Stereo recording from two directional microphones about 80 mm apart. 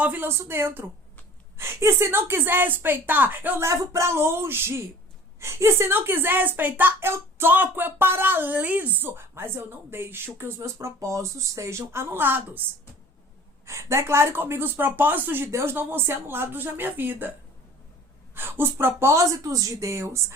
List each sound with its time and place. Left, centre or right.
0.0 s speech: right
3.6 s speech: right
13.7 s speech: right
18.3 s speech: right